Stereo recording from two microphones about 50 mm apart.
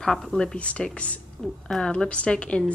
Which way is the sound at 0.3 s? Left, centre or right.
Centre.